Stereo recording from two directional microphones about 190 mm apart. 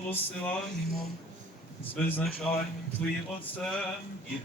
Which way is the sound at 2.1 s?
5° left (ahead or behind).